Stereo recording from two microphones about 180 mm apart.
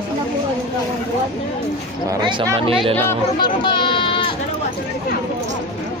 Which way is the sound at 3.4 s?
25° left (ahead or behind).